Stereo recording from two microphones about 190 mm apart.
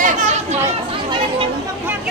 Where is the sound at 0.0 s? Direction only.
40° right (ahead or behind).